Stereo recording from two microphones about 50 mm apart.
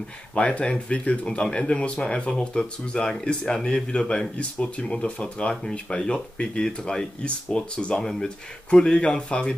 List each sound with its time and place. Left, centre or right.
0.3 s speech: left